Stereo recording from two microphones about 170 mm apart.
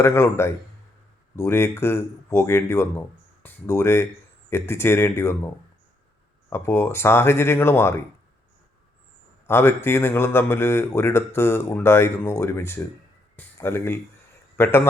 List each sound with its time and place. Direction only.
0.0 s speech: 15° left (ahead or behind)
6.5 s speech: 15° left (ahead or behind)
9.5 s speech: 15° left (ahead or behind)